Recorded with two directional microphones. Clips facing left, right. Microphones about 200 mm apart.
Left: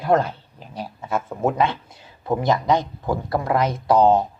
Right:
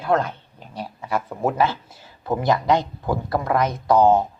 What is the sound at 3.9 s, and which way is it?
Speech, 15° left (ahead or behind).